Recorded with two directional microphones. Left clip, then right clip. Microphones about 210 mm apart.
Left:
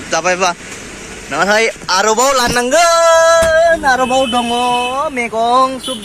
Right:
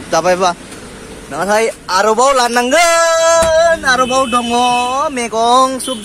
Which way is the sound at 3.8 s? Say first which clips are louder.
Even; 20° right (ahead or behind).